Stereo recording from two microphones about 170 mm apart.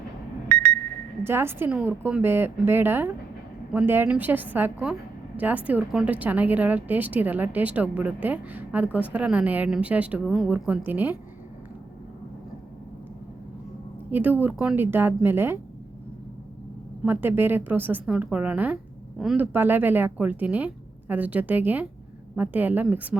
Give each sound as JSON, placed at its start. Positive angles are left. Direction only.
{"t": 0.4, "sound": "alarm clock", "side_deg": -60}
{"t": 1.2, "sound": "a woman's voice", "side_deg": -15}
{"t": 14.1, "sound": "a woman's voice", "side_deg": -10}
{"t": 17.0, "sound": "a woman's voice", "side_deg": -10}